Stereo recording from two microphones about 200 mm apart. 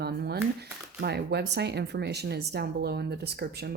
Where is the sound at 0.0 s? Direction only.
55° right (ahead or behind).